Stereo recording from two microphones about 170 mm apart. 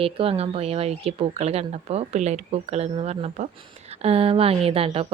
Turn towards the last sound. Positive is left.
turn(degrees=-35)  # may be behind; listen again after turning